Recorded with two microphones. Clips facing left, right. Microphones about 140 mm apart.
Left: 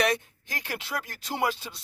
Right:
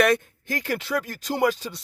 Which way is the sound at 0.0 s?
50° right (ahead or behind).